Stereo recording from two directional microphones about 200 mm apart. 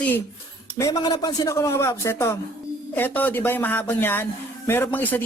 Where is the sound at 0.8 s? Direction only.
20° left (ahead or behind).